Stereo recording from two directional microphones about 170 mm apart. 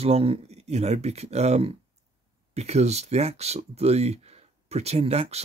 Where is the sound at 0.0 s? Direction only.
35° right (ahead or behind).